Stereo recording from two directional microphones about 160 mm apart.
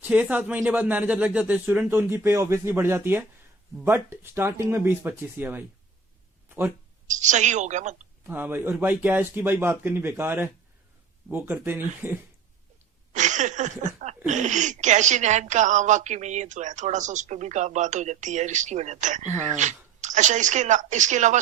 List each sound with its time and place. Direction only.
0.0 s speech: 10° right (ahead or behind)
7.1 s a woman's voice: 50° right (ahead or behind)
8.3 s speech: 15° right (ahead or behind)
13.1 s a woman's voice: 50° right (ahead or behind)